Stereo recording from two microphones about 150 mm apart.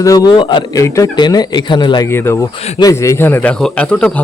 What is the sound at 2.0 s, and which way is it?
Speech, 15° left (ahead or behind).